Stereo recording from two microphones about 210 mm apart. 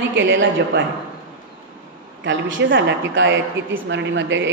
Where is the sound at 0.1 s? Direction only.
65° right (ahead or behind).